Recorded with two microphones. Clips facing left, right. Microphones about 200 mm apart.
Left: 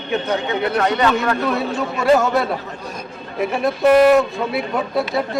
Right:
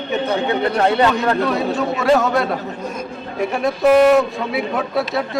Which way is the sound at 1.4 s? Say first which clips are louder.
Right 2 dB; centre (ahead or behind).